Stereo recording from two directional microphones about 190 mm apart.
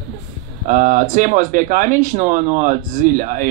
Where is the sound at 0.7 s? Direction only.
45° right (ahead or behind).